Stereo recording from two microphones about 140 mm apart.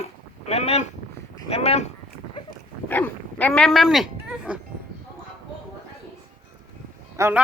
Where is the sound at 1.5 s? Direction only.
50° left (ahead or behind).